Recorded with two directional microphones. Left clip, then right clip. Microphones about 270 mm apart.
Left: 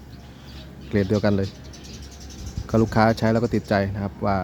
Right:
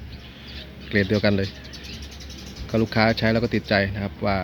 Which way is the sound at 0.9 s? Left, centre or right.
Centre.